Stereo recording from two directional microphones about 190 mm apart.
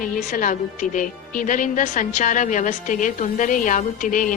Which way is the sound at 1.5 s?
40° left (ahead or behind).